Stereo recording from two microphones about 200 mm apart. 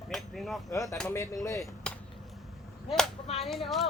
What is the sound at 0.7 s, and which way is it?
Speech, 15° left (ahead or behind).